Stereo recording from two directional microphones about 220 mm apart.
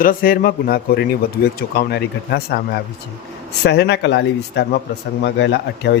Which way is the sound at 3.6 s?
50° left (ahead or behind).